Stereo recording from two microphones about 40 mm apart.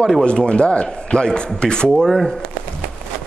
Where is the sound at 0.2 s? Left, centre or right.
Left.